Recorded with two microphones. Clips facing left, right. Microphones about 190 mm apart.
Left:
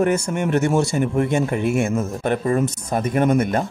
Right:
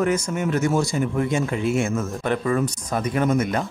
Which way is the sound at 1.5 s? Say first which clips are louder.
Left 2 dB; 55° left (ahead or behind).